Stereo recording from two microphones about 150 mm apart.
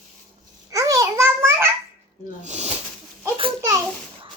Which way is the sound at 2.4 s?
50° right (ahead or behind).